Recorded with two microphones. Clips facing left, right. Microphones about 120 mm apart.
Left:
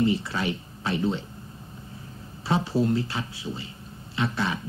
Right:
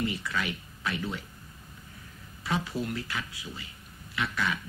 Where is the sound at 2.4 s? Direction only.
30° left (ahead or behind).